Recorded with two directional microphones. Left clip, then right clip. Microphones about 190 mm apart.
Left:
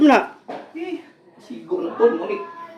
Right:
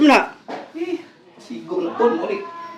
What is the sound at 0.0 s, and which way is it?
Speech, 15° left (ahead or behind).